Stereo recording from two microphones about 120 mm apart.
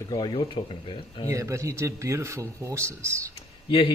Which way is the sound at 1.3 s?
25° right (ahead or behind).